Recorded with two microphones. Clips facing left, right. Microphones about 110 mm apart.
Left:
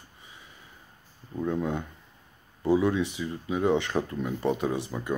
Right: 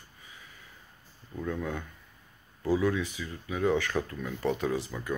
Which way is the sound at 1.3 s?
20° left (ahead or behind).